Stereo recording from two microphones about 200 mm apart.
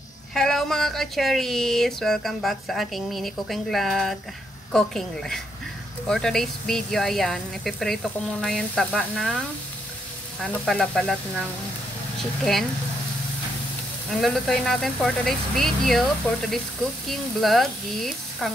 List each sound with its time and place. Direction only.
0.3 s speech: centre (ahead or behind)
14.2 s speech: centre (ahead or behind)